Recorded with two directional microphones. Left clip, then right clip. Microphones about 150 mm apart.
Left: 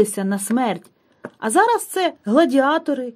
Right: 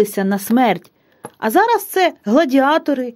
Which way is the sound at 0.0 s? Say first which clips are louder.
Right 2 dB; 45° right (ahead or behind).